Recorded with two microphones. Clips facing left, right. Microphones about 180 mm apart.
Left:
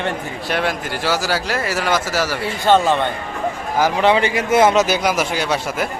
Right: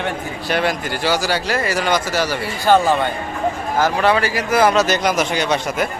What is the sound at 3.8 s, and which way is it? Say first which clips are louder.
A man's voice: left 1 dB; 20° left (ahead or behind).